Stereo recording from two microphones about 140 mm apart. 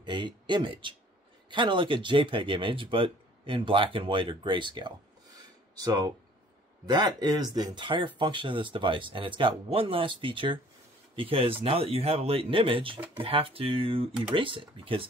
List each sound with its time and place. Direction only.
0.0 s speech: 35° right (ahead or behind)